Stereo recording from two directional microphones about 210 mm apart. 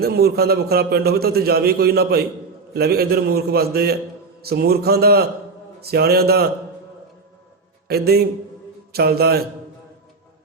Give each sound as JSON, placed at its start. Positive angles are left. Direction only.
{"t": 0.0, "sound": "a man's voice", "side_deg": -50}
{"t": 7.9, "sound": "a man's voice", "side_deg": -50}